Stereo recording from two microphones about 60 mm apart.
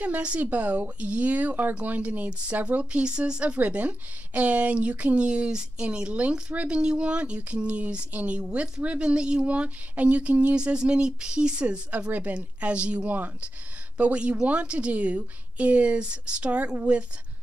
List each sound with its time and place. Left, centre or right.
0.0 s speech: right